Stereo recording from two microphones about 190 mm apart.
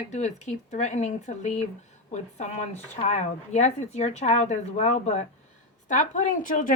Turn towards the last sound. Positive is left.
turn(degrees=45)  # may be behind; listen again after turning